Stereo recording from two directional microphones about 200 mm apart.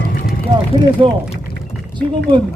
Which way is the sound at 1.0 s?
25° right (ahead or behind).